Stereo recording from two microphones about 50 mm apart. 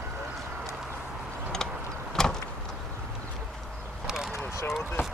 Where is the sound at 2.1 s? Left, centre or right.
Centre.